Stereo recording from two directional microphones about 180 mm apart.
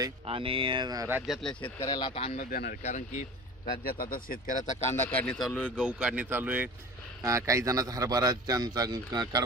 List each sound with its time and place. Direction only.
0.3 s a man's voice: 30° right (ahead or behind)
1.3 s a man's voice: centre (ahead or behind)
1.6 s speech: 25° left (ahead or behind)
2.4 s speech: 55° left (ahead or behind)
3.8 s speech: 55° left (ahead or behind)
4.9 s a man's voice: 10° left (ahead or behind)
5.8 s a man's voice: 5° right (ahead or behind); by 9.4 s 20° right (ahead or behind)